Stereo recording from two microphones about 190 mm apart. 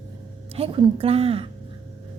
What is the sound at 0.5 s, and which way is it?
Speech, 30° right (ahead or behind).